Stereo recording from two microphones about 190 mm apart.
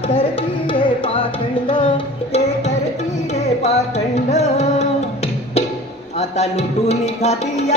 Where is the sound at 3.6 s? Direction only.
35° left (ahead or behind).